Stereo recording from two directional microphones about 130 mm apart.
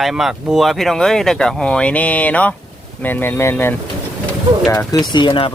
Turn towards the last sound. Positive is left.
turn(degrees=40)  # may be behind; listen again after turning